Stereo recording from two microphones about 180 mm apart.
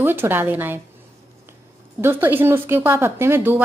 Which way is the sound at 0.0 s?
10° right (ahead or behind).